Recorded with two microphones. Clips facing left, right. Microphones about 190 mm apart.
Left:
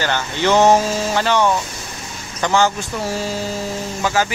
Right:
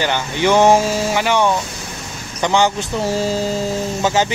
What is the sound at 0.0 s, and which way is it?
Speech, 15° right (ahead or behind).